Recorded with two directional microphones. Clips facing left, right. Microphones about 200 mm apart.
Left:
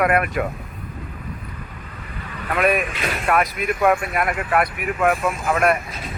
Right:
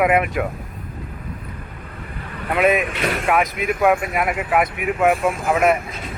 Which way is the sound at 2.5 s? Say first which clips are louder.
Right 2 dB; 20° right (ahead or behind).